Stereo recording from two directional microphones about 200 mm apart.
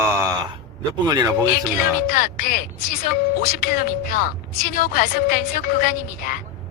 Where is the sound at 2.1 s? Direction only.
45° left (ahead or behind).